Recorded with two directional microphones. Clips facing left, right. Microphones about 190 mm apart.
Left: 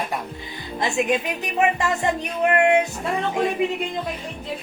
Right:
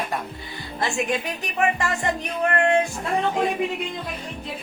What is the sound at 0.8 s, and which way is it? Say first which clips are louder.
Speech: left 3 dB; 20° left (ahead or behind).